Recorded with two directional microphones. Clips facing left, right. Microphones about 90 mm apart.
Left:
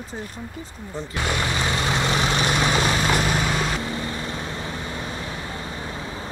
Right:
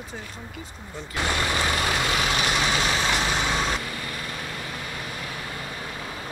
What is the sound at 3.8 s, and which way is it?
Vehicle, 25° left (ahead or behind).